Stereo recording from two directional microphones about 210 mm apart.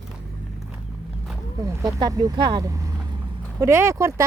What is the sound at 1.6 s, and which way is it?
Speech, 20° right (ahead or behind).